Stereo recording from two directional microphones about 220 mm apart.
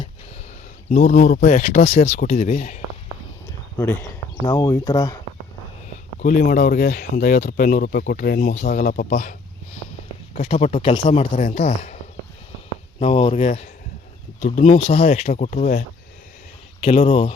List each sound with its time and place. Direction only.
0.9 s speech: 40° left (ahead or behind)
3.8 s speech: 10° left (ahead or behind)
6.1 s speech: 40° left (ahead or behind)
10.3 s speech: 30° left (ahead or behind)
13.0 s speech: 25° left (ahead or behind)
16.8 s speech: 25° left (ahead or behind)